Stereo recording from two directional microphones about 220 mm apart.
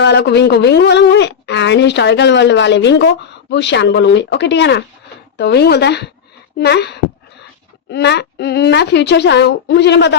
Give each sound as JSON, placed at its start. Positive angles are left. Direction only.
{"t": 0.0, "sound": "speech", "side_deg": 50}